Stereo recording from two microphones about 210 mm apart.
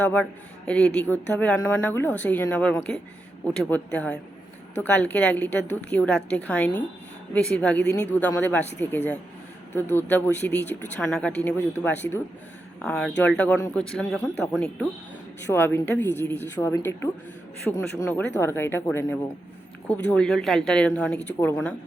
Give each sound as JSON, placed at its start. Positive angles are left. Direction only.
{"t": 0.0, "sound": "speech", "side_deg": 5}